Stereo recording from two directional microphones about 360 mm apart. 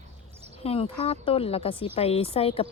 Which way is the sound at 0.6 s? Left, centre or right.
Centre.